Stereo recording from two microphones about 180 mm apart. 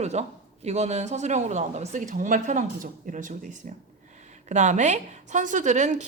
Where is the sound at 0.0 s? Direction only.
40° right (ahead or behind).